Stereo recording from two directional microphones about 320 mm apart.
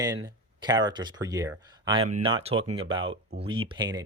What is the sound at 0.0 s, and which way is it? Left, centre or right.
Speech, centre.